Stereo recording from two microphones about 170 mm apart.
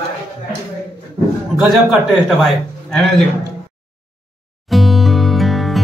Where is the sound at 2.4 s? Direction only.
Centre (ahead or behind).